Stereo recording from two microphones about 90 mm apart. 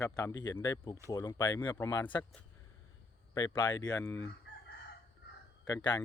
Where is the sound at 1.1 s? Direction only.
40° left (ahead or behind).